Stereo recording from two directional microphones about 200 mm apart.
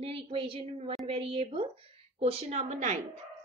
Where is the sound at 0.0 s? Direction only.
25° right (ahead or behind).